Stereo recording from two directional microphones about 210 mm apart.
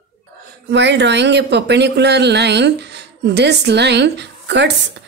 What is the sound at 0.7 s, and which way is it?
A woman's voice, 55° right (ahead or behind).